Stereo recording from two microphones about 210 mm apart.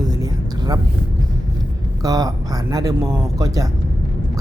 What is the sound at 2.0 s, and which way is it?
Speech, 15° right (ahead or behind).